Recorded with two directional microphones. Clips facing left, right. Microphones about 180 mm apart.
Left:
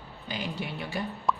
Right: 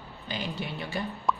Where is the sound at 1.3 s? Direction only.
Centre (ahead or behind).